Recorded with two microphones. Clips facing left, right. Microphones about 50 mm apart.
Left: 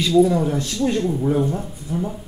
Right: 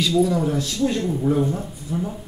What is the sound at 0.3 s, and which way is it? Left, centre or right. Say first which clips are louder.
Speech: left 1 dB; centre.